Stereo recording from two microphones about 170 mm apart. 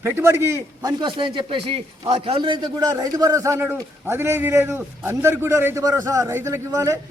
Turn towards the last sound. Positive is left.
turn(degrees=-20)  # may be behind; listen again after turning